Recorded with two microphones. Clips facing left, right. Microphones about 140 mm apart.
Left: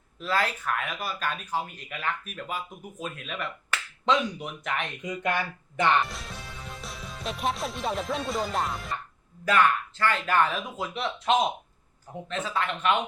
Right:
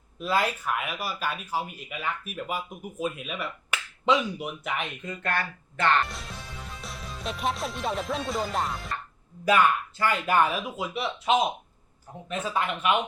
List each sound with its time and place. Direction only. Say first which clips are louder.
0.2 s speech: right 2 dB; 10° right (ahead or behind)
5.0 s speech: left 4 dB; 15° left (ahead or behind)
6.0 s speech: even; centre (ahead or behind)
9.4 s speech: right 1 dB; 10° right (ahead or behind)